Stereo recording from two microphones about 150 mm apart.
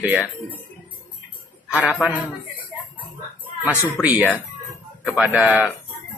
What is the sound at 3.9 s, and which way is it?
Speech, 10° right (ahead or behind).